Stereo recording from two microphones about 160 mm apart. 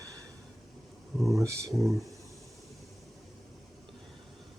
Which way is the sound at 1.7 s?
Centre (ahead or behind).